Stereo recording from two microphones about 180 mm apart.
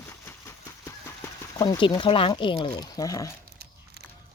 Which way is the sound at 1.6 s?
25° left (ahead or behind).